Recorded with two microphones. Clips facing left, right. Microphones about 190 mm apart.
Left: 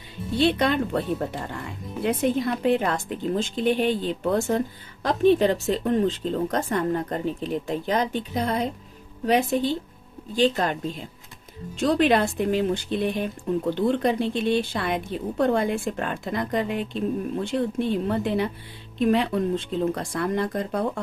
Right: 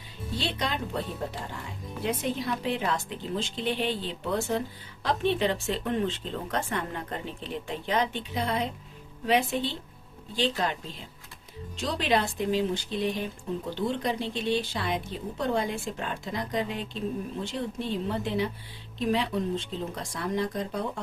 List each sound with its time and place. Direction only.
0.3 s a woman's voice: 60° left (ahead or behind)
11.8 s speech: 55° left (ahead or behind)